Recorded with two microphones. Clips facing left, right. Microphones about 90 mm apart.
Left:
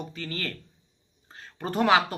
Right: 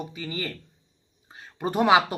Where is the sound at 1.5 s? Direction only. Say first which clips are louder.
Right 2 dB; 15° right (ahead or behind).